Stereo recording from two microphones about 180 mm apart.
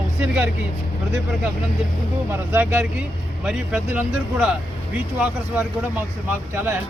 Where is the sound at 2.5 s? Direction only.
10° right (ahead or behind).